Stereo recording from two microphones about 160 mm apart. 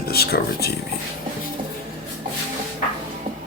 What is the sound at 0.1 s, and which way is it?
Speech, 75° left (ahead or behind).